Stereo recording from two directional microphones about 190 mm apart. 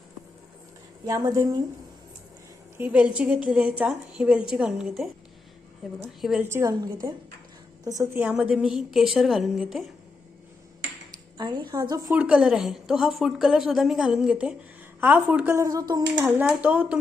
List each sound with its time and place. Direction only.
1.0 s speech: 20° right (ahead or behind)
2.7 s a woman's voice: 10° right (ahead or behind)
11.3 s a woman's voice: 25° right (ahead or behind)
12.1 s a woman's voice: 5° right (ahead or behind)